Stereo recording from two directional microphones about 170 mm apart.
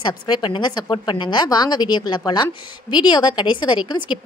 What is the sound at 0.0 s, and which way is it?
A woman's voice, 25° left (ahead or behind).